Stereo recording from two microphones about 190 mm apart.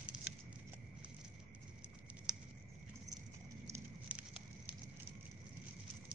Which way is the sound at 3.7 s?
5° right (ahead or behind).